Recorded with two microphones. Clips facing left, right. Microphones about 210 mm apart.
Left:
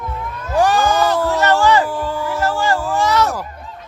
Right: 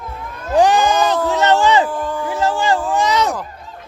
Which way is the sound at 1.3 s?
20° right (ahead or behind).